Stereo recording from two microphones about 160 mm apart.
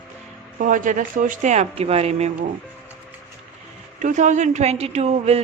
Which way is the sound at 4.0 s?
50° right (ahead or behind).